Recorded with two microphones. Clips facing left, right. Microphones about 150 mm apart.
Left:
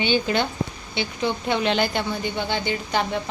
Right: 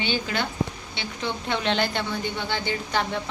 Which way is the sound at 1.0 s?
10° left (ahead or behind).